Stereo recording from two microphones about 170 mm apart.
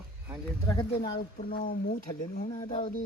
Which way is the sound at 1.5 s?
55° left (ahead or behind).